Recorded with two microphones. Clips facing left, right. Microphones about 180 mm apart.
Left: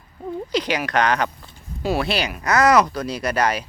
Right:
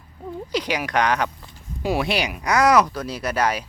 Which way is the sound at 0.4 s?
10° right (ahead or behind).